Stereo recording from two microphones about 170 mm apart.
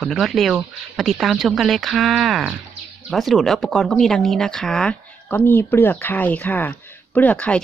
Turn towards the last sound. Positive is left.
turn(degrees=10)  # may be behind; listen again after turning